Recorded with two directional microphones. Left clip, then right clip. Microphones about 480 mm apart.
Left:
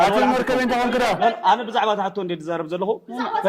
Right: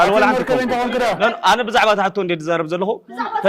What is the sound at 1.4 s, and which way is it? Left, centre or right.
A man's voice, right.